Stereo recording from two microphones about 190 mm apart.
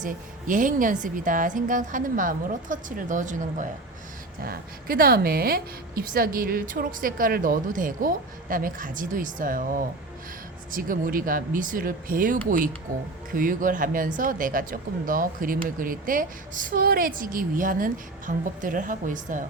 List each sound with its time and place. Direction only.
0.0 s speech: 45° right (ahead or behind)